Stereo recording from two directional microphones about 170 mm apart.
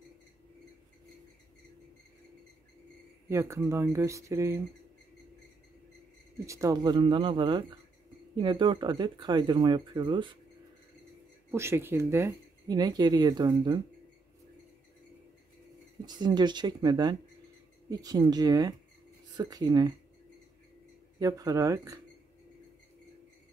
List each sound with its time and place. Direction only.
3.3 s speech: 15° right (ahead or behind)
6.4 s speech: 20° right (ahead or behind)
11.5 s speech: 15° right (ahead or behind)
16.1 s speech: 25° right (ahead or behind)
21.2 s speech: 20° right (ahead or behind)